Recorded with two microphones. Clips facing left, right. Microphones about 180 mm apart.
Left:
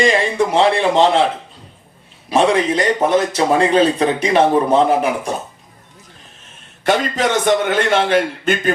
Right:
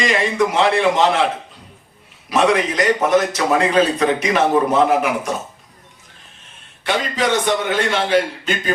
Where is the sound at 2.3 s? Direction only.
30° left (ahead or behind).